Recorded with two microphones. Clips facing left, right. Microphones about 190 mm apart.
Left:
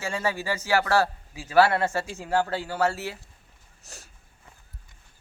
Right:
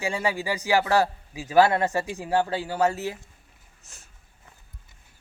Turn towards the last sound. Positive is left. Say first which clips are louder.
# left 6 dB
turn(degrees=35)  # may be behind; listen again after turning